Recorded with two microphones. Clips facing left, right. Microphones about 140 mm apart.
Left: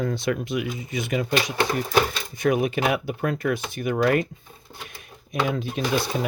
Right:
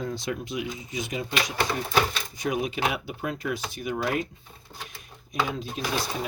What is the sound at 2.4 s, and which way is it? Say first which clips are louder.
Speech: left 6 dB; 55° left (ahead or behind).